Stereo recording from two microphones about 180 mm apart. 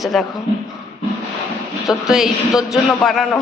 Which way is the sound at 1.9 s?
Centre (ahead or behind).